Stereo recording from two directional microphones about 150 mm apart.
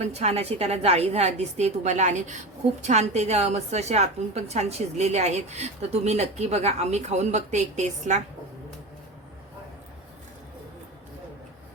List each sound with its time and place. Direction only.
0.0 s a woman's voice: 45° right (ahead or behind)